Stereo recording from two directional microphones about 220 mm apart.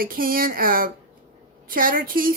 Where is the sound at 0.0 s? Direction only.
40° right (ahead or behind).